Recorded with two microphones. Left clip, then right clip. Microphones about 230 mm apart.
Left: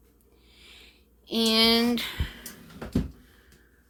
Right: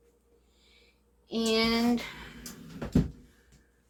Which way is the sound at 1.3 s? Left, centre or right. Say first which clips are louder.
Left 6 dB; left.